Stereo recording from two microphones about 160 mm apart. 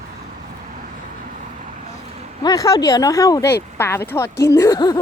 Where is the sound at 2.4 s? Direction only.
25° left (ahead or behind).